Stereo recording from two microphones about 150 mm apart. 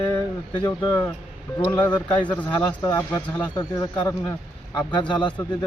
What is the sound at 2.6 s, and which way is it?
Speech, 30° left (ahead or behind).